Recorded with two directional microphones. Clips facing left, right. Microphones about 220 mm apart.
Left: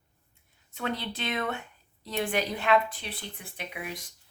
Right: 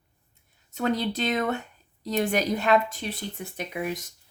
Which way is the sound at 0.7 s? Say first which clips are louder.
Right 7 dB; 40° right (ahead or behind).